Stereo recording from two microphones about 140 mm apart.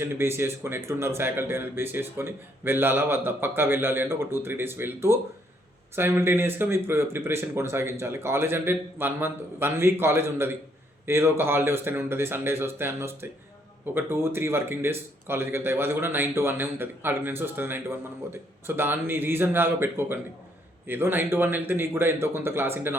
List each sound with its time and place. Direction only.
0.0 s a man's voice: 15° right (ahead or behind)